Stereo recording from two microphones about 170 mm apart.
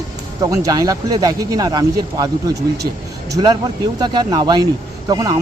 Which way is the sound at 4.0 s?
25° right (ahead or behind).